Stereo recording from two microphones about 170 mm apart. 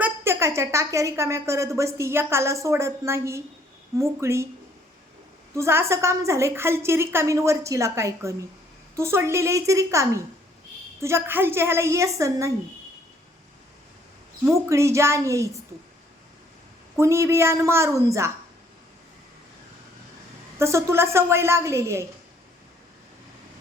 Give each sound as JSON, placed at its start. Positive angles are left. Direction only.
{"t": 0.0, "sound": "a woman's voice", "side_deg": -15}
{"t": 5.5, "sound": "a woman's voice", "side_deg": -15}
{"t": 14.4, "sound": "a woman's voice", "side_deg": -15}
{"t": 17.0, "sound": "a woman's voice", "side_deg": -15}
{"t": 20.6, "sound": "a woman's voice", "side_deg": -15}